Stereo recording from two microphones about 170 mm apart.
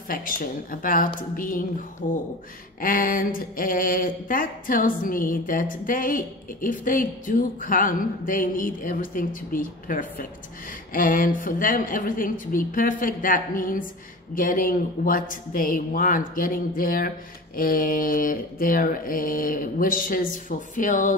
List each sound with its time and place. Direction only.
0.1 s mantra: 55° left (ahead or behind)
1.3 s speech: 55° left (ahead or behind)
14.3 s mantra: 55° left (ahead or behind)